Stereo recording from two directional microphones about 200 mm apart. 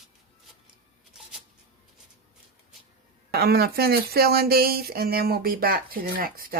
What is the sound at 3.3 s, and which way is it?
Speech, 50° right (ahead or behind).